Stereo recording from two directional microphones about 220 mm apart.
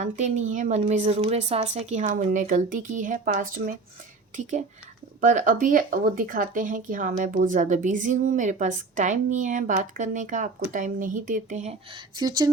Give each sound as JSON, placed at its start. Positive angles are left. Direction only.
{"t": 0.0, "sound": "a woman's voice", "side_deg": -35}
{"t": 5.2, "sound": "a woman's voice", "side_deg": -35}
{"t": 12.1, "sound": "speech", "side_deg": -20}